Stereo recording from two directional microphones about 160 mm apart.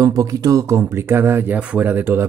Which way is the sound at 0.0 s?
20° right (ahead or behind).